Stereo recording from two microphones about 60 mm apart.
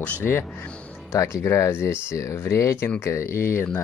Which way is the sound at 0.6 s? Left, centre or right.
Centre.